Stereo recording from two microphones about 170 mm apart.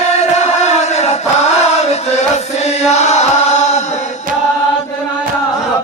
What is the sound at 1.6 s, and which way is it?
Chant, 40° left (ahead or behind).